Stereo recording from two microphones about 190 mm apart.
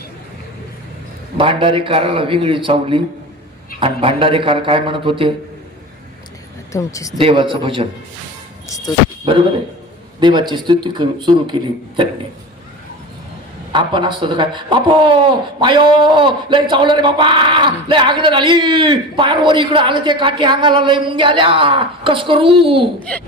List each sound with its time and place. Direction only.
1.4 s speech: 25° right (ahead or behind)
6.7 s speech: 15° left (ahead or behind)
7.2 s speech: 25° right (ahead or behind)
10.2 s speech: 25° right (ahead or behind)
13.7 s speech: 25° right (ahead or behind)
23.0 s speech: 5° left (ahead or behind)